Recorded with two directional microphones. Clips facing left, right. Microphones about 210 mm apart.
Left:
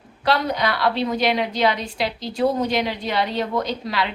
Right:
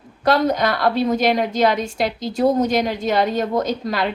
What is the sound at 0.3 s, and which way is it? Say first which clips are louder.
A woman's voice: right 4 dB; 45° right (ahead or behind).